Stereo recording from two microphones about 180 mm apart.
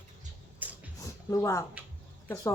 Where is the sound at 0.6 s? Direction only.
10° right (ahead or behind).